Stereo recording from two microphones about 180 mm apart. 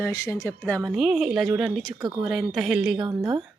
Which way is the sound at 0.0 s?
15° left (ahead or behind).